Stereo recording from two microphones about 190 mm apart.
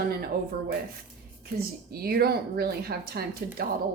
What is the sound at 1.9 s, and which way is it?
A woman's voice, 55° right (ahead or behind).